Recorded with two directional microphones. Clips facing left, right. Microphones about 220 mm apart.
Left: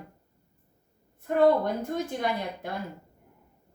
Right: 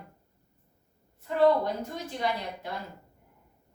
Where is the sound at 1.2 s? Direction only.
50° left (ahead or behind).